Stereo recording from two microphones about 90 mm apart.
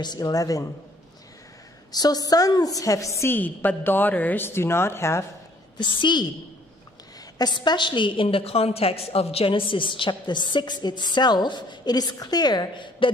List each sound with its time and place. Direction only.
0.0 s speech: 45° left (ahead or behind)
1.9 s a woman's voice: 45° left (ahead or behind); by 5.2 s 30° left (ahead or behind)
5.8 s a woman's voice: 60° left (ahead or behind)
7.3 s a woman's voice: 55° left (ahead or behind)